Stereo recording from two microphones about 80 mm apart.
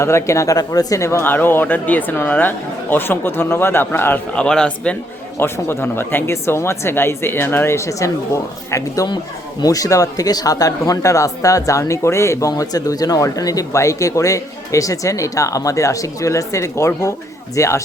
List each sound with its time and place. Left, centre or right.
0.0 s speech: left
1.2 s speech: left
4.4 s speech: centre
5.4 s speech: left